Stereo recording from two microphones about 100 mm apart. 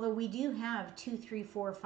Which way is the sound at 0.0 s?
5° left (ahead or behind).